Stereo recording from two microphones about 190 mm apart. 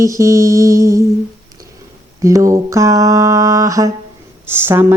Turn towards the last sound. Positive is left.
turn(degrees=-10)  # may be behind; listen again after turning